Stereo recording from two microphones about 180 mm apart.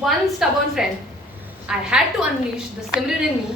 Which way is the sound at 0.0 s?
Centre (ahead or behind).